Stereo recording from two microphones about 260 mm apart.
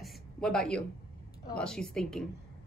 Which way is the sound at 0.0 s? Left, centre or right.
Centre.